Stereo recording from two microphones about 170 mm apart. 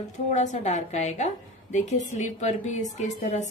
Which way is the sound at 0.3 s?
45° left (ahead or behind).